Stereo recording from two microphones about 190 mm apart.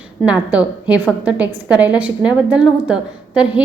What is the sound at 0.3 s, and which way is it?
A woman's voice, 5° right (ahead or behind).